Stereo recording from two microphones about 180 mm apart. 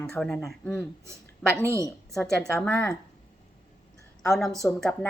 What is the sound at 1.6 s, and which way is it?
Speech, 15° right (ahead or behind).